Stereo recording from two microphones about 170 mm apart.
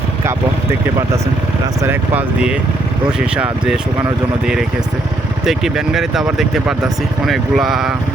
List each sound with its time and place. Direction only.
0.3 s vehicle: 15° right (ahead or behind)
1.8 s speech: 10° right (ahead or behind)
5.5 s speech: centre (ahead or behind)